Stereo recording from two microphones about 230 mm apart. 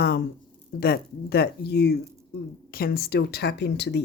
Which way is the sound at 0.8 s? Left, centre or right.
Left.